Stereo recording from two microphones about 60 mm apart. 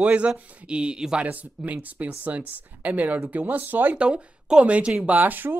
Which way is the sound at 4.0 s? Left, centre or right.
Centre.